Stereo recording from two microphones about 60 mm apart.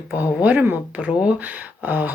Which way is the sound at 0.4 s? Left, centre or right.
Right.